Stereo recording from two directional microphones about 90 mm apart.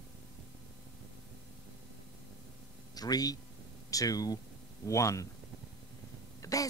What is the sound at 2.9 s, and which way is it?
A man's voice, 45° left (ahead or behind).